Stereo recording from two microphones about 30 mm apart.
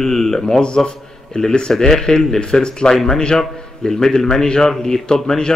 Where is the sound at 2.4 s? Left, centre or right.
Left.